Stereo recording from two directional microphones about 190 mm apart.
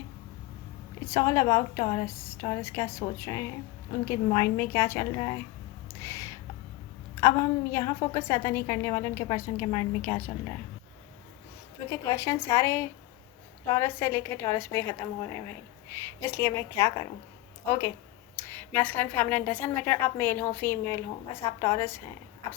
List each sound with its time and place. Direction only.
1.0 s a woman's voice: 15° left (ahead or behind)
6.0 s a sound: 15° left (ahead or behind)
7.2 s a woman's voice: 15° left (ahead or behind)
11.9 s a woman's voice: 15° left (ahead or behind)